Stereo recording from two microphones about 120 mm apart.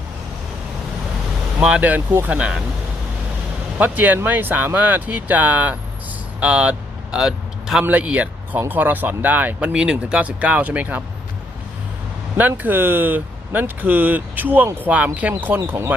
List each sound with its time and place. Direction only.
1.6 s speech: 10° right (ahead or behind)
3.8 s speech: 15° right (ahead or behind)
12.4 s speech: 15° right (ahead or behind)